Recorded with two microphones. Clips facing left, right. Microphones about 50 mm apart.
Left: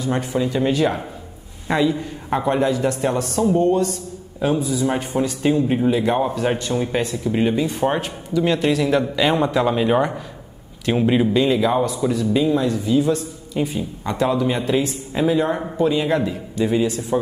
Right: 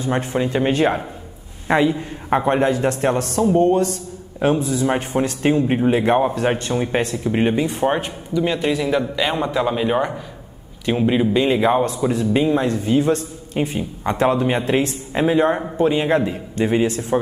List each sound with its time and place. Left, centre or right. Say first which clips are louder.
0.0 s a man's voice: right 1 dB; right
3.5 s a man's voice: right 3 dB; right
4.8 s a man's voice: right 1 dB; right
6.7 s a man's voice: right 1 dB; right
7.8 s a man's voice: right 1 dB; centre
11.3 s a man's voice: right 1 dB; right
11.8 s a man's voice: right 1 dB; right
15.1 s a man's voice: right 2 dB; right